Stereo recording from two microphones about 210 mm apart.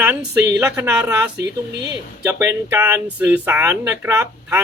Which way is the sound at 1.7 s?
55° right (ahead or behind).